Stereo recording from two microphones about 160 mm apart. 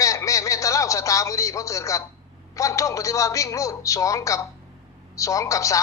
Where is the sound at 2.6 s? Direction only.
20° left (ahead or behind).